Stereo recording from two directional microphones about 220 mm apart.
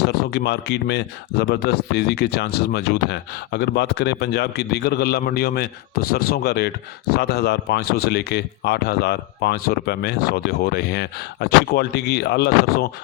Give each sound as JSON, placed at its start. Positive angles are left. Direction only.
{"t": 0.0, "sound": "speech", "side_deg": 45}